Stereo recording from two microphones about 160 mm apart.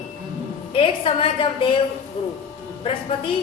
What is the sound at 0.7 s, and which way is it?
A woman's voice, 35° left (ahead or behind).